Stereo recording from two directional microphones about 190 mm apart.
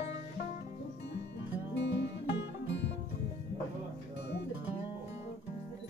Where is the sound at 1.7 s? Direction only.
65° left (ahead or behind).